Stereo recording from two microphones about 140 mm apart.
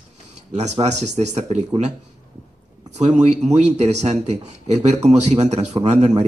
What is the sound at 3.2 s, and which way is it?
Speech, 50° right (ahead or behind).